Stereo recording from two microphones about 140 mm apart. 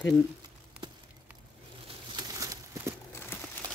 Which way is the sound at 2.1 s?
25° right (ahead or behind).